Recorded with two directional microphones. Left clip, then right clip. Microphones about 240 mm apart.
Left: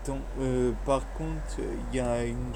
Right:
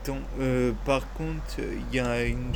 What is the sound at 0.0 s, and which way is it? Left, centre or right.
Speech, right.